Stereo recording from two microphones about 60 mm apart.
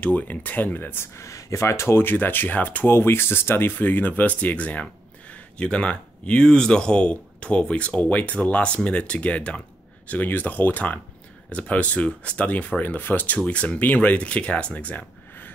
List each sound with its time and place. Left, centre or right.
0.0 s speech: left
1.1 s speech: left
2.0 s speech: left
2.9 s speech: left
13.5 s speech: left